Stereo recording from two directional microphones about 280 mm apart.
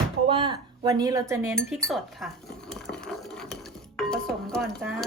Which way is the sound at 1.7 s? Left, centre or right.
Centre.